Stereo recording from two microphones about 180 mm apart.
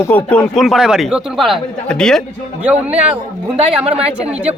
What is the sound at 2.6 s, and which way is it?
A man's voice, 10° right (ahead or behind).